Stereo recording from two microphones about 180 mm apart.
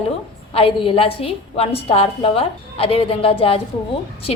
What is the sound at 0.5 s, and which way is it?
A woman's voice, 30° left (ahead or behind).